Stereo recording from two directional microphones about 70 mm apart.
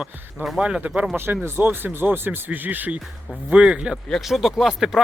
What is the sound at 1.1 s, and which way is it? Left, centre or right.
Speech, right.